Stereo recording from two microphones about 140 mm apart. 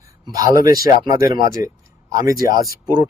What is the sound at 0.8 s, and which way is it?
Speech, 25° right (ahead or behind).